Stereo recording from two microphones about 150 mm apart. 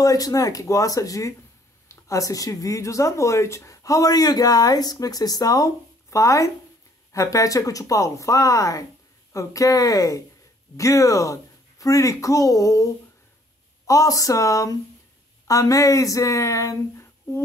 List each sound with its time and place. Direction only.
0.0 s speech: 25° left (ahead or behind)